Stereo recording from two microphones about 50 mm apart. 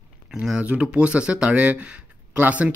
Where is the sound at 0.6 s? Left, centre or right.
Right.